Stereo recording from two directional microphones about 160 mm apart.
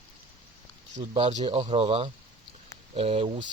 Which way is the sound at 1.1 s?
45° right (ahead or behind).